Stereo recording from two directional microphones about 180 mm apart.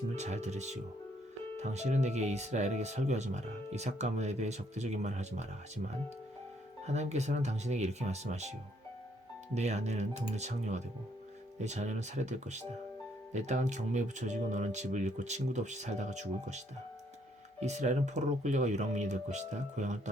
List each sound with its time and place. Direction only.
0.2 s speech: 40° right (ahead or behind)
6.8 s speech: 40° right (ahead or behind)
9.6 s speech: 40° right (ahead or behind)
17.6 s speech: 40° right (ahead or behind)